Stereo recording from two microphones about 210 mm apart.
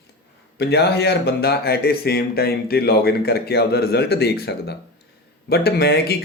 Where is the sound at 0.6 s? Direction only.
50° left (ahead or behind).